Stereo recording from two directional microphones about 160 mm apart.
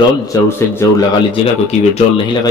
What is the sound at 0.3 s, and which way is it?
Speech, 20° left (ahead or behind).